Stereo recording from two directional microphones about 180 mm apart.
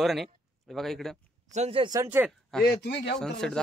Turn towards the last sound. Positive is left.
turn(degrees=5)  # may be behind; listen again after turning